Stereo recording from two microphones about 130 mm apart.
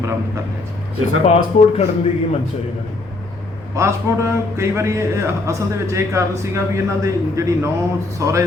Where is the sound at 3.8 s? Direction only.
20° right (ahead or behind).